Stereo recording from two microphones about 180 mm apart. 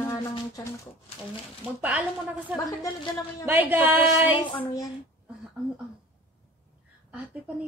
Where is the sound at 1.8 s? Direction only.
10° right (ahead or behind).